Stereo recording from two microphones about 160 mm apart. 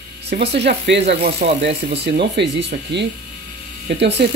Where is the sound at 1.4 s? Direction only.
60° right (ahead or behind).